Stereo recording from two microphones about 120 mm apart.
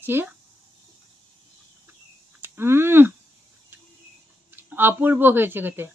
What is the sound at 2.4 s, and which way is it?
Speech, 20° right (ahead or behind).